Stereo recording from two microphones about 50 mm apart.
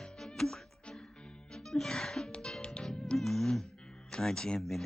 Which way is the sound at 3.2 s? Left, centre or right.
Centre.